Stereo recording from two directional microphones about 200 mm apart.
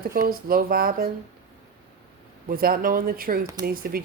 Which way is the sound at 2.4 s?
45° right (ahead or behind).